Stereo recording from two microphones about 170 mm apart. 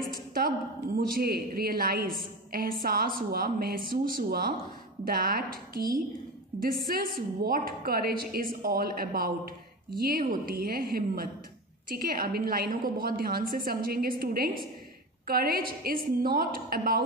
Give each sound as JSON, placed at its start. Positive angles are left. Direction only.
{"t": 0.9, "sound": "a woman's voice", "side_deg": -60}